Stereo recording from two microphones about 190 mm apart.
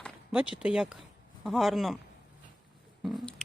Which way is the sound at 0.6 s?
5° right (ahead or behind).